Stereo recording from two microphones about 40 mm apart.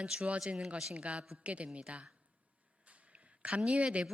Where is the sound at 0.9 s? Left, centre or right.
Right.